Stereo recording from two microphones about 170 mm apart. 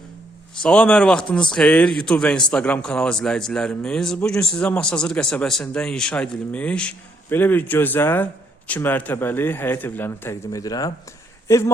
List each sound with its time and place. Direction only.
0.6 s speech: 5° left (ahead or behind)